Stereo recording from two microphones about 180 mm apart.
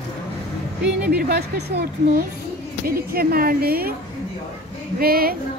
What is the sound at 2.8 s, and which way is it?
A woman's voice, 55° right (ahead or behind).